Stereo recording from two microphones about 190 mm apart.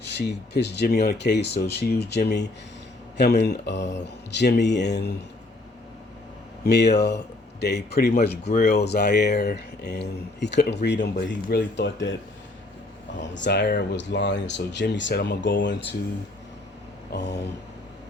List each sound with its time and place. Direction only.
0.2 s speech: 60° left (ahead or behind)
6.7 s speech: 60° left (ahead or behind)
13.3 s speech: 70° left (ahead or behind)
17.1 s speech: 65° left (ahead or behind)